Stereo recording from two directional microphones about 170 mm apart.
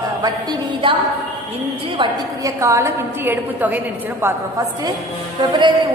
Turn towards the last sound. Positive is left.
turn(degrees=-20)  # may be behind; listen again after turning